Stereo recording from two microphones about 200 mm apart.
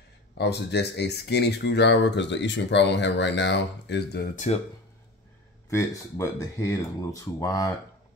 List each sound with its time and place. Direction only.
0.4 s speech: 55° left (ahead or behind)
5.7 s speech: 15° left (ahead or behind)